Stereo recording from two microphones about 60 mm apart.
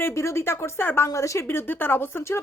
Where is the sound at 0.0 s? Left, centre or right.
Left.